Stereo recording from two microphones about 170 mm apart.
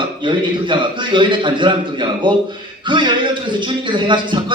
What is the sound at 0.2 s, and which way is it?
Speech, 30° right (ahead or behind).